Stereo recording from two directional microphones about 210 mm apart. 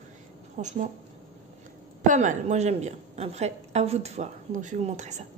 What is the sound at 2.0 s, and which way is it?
A woman's voice, 35° right (ahead or behind).